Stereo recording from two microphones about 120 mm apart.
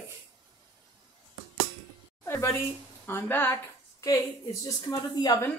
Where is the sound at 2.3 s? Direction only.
20° left (ahead or behind).